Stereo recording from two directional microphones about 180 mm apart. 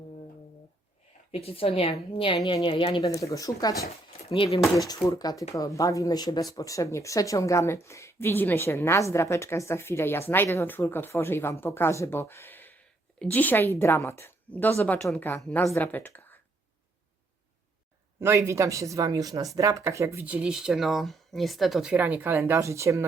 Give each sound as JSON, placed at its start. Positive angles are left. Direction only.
{"t": 1.3, "sound": "a woman's voice", "side_deg": 30}
{"t": 18.2, "sound": "speech", "side_deg": -15}